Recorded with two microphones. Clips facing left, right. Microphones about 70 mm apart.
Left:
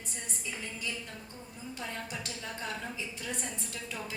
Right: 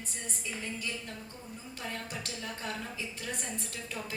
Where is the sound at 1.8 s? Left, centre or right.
Right.